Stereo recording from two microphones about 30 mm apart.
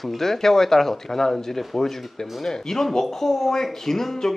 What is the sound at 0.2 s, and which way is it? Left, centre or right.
Speech, centre.